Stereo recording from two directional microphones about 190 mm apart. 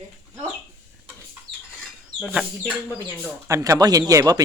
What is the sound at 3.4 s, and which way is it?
Speech, 15° right (ahead or behind).